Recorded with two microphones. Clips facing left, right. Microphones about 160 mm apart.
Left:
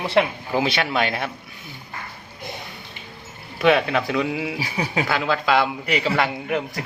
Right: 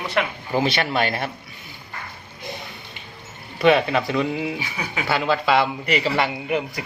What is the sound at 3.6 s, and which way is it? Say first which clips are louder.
Speech: right 1 dB; centre (ahead or behind).